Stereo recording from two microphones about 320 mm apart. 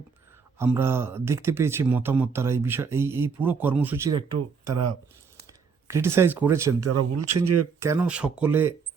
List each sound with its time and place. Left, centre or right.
0.6 s speech: centre
5.5 s speech: centre
6.8 s speech: right
7.8 s speech: centre